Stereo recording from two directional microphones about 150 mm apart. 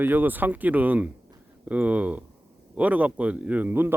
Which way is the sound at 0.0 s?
10° right (ahead or behind).